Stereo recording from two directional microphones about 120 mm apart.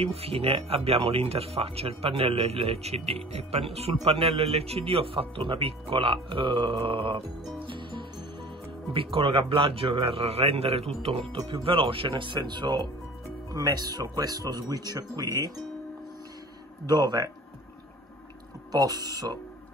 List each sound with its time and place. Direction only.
0.0 s speech: 55° right (ahead or behind)
7.5 s music: 45° right (ahead or behind)
8.9 s speech: 50° right (ahead or behind); by 15.5 s 30° right (ahead or behind)
16.8 s speech: 35° right (ahead or behind)
18.7 s speech: 30° right (ahead or behind)